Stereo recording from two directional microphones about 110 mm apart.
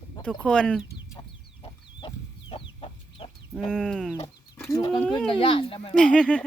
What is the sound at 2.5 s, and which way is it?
Chicken, 55° left (ahead or behind).